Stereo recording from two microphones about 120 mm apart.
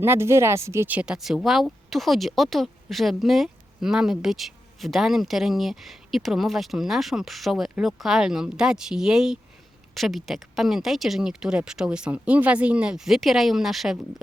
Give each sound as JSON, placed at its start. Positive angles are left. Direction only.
{"t": 0.0, "sound": "speech", "side_deg": -20}